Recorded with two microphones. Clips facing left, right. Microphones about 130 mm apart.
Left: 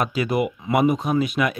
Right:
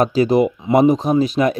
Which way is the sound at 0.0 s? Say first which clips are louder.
Right 8 dB; 35° right (ahead or behind).